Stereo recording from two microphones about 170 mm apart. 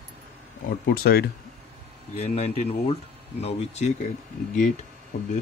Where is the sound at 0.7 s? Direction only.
65° left (ahead or behind).